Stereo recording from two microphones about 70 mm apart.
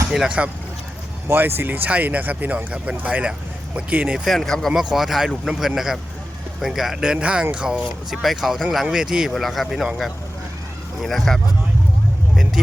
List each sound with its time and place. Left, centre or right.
0.3 s speech: centre
1.3 s speech: right
4.4 s speech: centre
4.7 s speech: centre
8.2 s speech: centre